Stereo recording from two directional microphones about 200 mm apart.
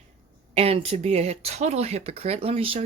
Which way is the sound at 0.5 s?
30° right (ahead or behind).